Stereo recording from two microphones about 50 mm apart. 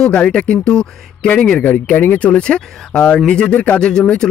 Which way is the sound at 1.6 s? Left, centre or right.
Left.